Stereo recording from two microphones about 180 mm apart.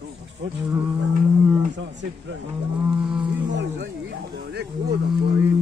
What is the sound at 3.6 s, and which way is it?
Speech, 80° right.